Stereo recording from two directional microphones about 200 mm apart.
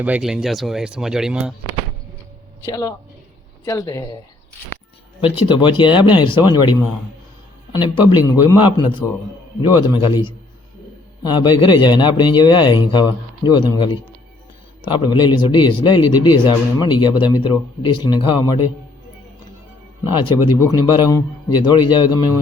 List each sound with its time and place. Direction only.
0.0 s speech: 5° right (ahead or behind)
2.6 s speech: 15° left (ahead or behind)
5.2 s a man's voice: 25° left (ahead or behind)
20.6 s a man's voice: 15° left (ahead or behind)